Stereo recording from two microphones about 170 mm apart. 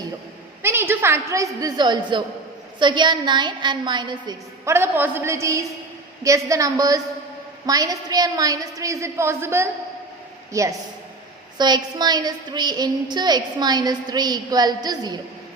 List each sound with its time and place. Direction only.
0.6 s a woman's voice: 15° right (ahead or behind)